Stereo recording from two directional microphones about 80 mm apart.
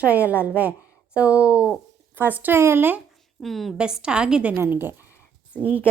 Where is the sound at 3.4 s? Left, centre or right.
Centre.